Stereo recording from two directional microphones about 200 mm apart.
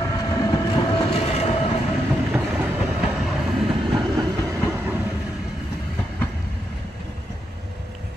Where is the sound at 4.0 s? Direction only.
20° right (ahead or behind).